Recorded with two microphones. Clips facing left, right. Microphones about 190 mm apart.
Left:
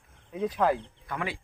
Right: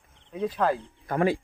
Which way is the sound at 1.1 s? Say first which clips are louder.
Right 10 dB; 40° right (ahead or behind).